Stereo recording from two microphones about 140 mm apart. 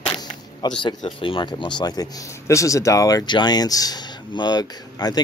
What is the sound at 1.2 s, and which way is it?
Speech, 35° left (ahead or behind).